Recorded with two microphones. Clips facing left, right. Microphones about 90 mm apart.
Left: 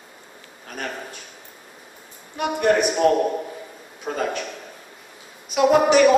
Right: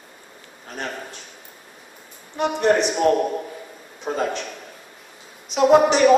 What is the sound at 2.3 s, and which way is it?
Mantra, 10° left (ahead or behind).